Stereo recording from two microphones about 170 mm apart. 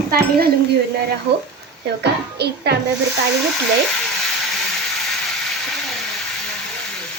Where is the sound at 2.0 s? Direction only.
75° right (ahead or behind).